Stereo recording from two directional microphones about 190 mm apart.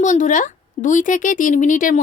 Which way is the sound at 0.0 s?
40° left (ahead or behind).